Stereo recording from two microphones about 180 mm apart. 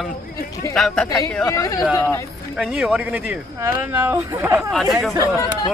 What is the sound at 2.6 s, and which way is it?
Speech, 5° right (ahead or behind).